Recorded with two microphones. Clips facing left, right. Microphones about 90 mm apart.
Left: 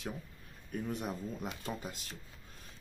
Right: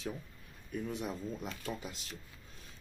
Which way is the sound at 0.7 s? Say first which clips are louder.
Even; 45° left (ahead or behind).